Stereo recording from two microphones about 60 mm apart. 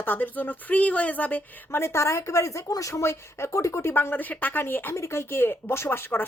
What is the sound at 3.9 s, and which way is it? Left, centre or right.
A woman's voice, left.